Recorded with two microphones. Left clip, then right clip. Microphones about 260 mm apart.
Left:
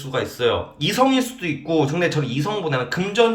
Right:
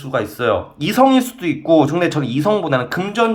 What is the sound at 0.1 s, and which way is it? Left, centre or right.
Speech, centre.